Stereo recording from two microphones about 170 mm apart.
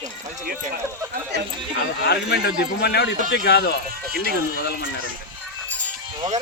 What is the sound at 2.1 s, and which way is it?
A man's voice, 75° left (ahead or behind).